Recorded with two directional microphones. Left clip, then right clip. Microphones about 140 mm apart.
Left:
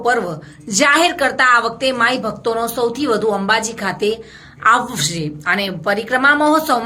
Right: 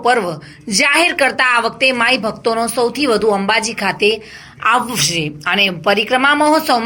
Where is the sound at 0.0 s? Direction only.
25° right (ahead or behind).